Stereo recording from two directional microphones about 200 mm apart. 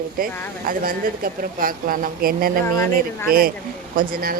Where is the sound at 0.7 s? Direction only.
45° right (ahead or behind).